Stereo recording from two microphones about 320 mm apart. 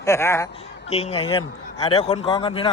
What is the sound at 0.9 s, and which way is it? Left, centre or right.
Speech, centre.